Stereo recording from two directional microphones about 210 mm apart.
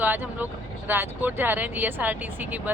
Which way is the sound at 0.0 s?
10° right (ahead or behind).